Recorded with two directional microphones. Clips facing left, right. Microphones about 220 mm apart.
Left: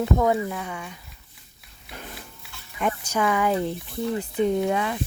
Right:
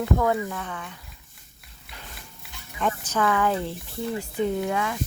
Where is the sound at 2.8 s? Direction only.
10° left (ahead or behind).